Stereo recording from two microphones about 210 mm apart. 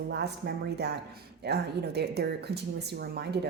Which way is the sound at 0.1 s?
50° right (ahead or behind).